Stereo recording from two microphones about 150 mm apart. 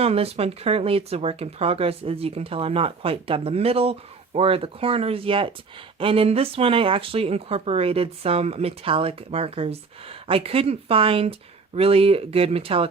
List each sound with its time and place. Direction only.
0.0 s speech: 40° right (ahead or behind)